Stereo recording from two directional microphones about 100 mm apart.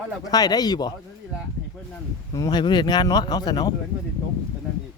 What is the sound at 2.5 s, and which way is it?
Speech, 45° left (ahead or behind).